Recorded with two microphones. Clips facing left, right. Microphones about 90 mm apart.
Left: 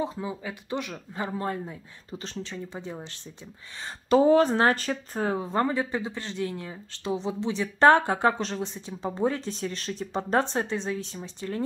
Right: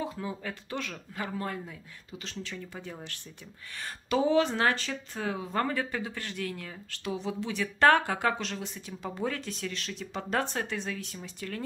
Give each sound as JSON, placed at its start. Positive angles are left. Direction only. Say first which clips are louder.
{"t": 0.0, "sound": "speech", "louder": "left 4 dB", "side_deg": 20}
{"t": 4.1, "sound": "speech", "louder": "left 6 dB", "side_deg": 40}
{"t": 5.5, "sound": "speech", "louder": "left 4 dB", "side_deg": 20}